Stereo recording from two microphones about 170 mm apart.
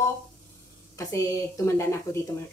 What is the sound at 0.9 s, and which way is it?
Speech, 20° left (ahead or behind).